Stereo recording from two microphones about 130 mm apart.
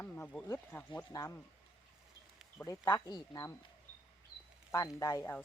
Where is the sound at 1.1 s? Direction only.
25° left (ahead or behind).